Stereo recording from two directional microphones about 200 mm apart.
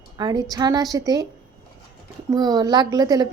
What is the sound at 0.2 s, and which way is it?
A woman's voice, 20° right (ahead or behind).